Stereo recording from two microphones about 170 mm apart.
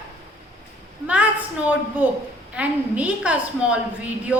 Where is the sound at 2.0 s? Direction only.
10° right (ahead or behind).